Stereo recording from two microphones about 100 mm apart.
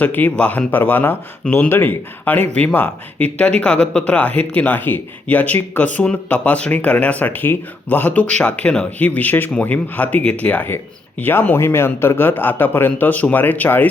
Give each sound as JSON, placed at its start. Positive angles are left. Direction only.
{"t": 0.0, "sound": "a man's voice", "side_deg": 15}